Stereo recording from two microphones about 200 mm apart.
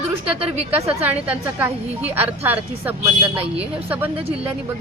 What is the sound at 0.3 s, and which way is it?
Speech, 30° right (ahead or behind).